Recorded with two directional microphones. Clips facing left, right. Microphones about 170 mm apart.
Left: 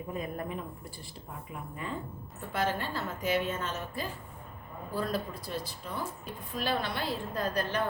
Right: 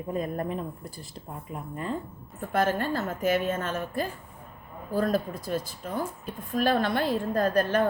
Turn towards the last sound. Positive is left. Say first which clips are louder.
# right 8 dB
turn(degrees=-50)  # may be behind; listen again after turning